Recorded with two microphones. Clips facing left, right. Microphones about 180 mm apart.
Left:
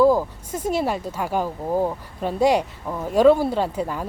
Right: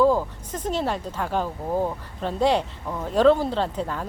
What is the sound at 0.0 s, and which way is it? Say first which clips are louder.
Speech: left 3 dB; 10° left (ahead or behind).